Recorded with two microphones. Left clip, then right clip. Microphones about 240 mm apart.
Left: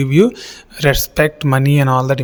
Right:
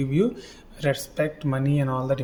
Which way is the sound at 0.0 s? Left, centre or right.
Left.